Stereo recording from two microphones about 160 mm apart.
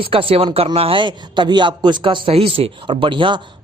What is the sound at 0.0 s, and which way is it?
A man's voice, 35° right (ahead or behind).